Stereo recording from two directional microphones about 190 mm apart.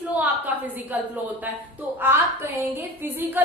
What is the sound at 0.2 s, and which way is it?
A woman's voice, 10° right (ahead or behind).